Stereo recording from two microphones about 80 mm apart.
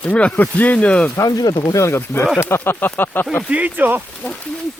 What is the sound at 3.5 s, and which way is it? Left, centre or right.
Speech, centre.